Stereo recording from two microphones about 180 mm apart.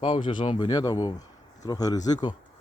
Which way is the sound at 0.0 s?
30° left (ahead or behind).